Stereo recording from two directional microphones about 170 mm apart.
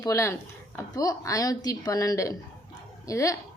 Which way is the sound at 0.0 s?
15° left (ahead or behind).